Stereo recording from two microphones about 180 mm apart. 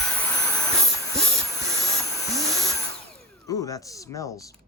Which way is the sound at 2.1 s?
20° left (ahead or behind).